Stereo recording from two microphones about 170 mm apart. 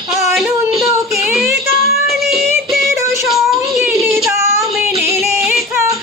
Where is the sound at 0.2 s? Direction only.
Centre (ahead or behind).